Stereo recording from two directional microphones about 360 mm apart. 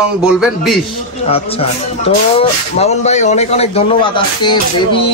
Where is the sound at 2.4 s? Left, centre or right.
Centre.